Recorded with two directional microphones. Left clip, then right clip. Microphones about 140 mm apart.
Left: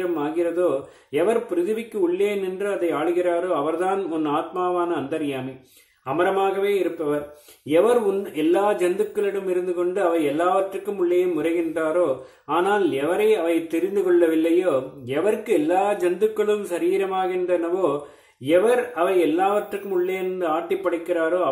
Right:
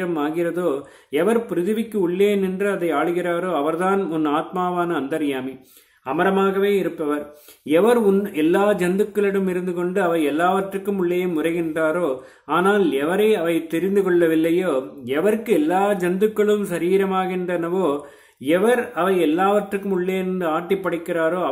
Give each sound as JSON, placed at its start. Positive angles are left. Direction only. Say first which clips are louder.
{"t": 1.1, "sound": "speech", "louder": "right 1 dB", "side_deg": -30}